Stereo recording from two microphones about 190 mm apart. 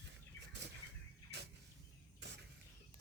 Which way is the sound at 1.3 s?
60° right (ahead or behind).